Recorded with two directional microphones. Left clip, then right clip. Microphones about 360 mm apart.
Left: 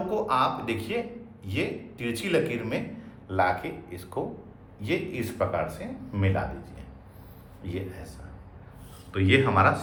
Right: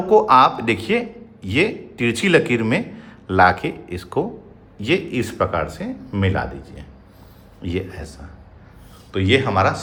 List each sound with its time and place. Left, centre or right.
0.1 s a man's voice: right
9.1 s speech: centre